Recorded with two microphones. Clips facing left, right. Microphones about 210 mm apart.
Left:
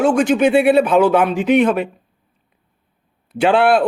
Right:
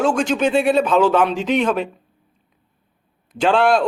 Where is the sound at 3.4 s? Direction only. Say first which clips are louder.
Left 2 dB; 10° left (ahead or behind).